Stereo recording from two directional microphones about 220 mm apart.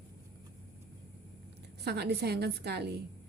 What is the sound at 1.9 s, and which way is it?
Speech, 45° right (ahead or behind).